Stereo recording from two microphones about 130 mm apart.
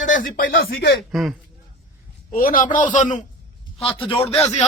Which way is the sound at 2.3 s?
90° left.